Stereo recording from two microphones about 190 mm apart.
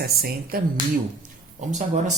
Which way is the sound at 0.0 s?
55° right (ahead or behind).